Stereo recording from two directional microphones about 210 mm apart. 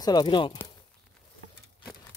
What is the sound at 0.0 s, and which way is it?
Speech, 20° left (ahead or behind).